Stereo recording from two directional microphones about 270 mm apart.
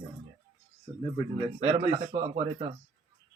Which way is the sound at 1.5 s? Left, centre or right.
Right.